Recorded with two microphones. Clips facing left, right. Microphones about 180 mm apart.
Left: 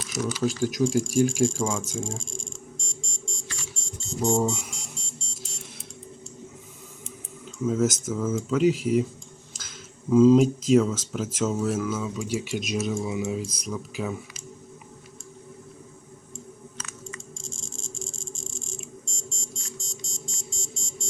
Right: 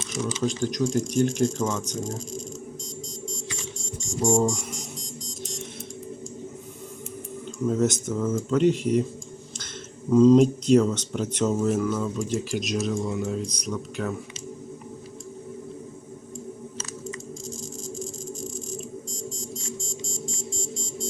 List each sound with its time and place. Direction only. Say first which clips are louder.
0.1 s speech: left 1 dB; 5° left (ahead or behind)
2.0 s music: right 4 dB; 25° left (ahead or behind)
4.3 s speech: right 2 dB; centre (ahead or behind)
7.6 s speech: right 1 dB; centre (ahead or behind)
16.7 s a sound: right 6 dB; 35° right (ahead or behind)
17.4 s frog: right 7 dB; 25° left (ahead or behind)
19.8 s music: right 7 dB; 25° left (ahead or behind)